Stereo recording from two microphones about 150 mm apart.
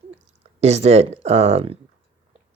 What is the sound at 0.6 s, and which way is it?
Speech, 45° right (ahead or behind).